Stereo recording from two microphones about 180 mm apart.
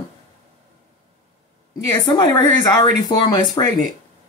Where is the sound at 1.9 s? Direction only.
20° left (ahead or behind).